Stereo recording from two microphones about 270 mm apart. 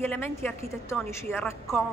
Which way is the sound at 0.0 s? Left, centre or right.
Centre.